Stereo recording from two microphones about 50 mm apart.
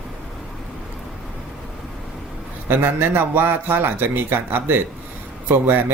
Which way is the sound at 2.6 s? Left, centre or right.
Right.